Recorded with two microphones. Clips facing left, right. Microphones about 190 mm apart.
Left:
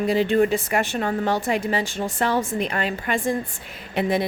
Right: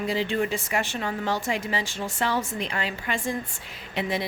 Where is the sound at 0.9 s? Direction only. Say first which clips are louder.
Left 5 dB; 45° left (ahead or behind).